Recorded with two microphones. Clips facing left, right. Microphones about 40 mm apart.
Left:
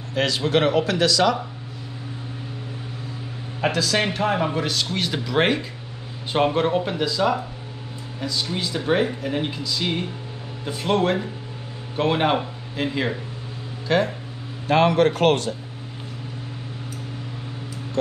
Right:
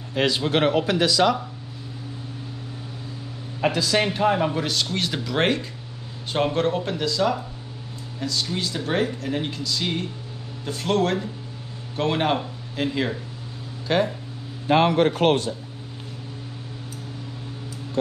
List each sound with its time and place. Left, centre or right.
0.1 s speech: centre
3.7 s speech: centre
15.0 s speech: left